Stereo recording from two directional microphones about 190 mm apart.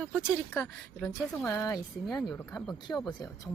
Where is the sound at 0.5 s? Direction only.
5° left (ahead or behind).